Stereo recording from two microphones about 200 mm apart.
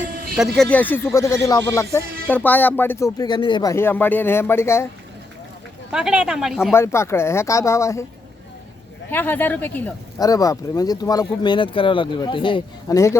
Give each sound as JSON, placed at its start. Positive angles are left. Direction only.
{"t": 0.3, "sound": "speech", "side_deg": 0}
{"t": 5.9, "sound": "speech", "side_deg": -5}
{"t": 6.7, "sound": "speech", "side_deg": 15}
{"t": 9.0, "sound": "speech", "side_deg": 10}